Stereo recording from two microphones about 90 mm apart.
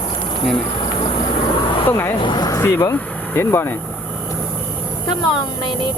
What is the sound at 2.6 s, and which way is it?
Speech, 30° left (ahead or behind).